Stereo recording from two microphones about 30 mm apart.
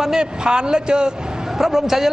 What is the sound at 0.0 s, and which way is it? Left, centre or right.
A man's voice, right.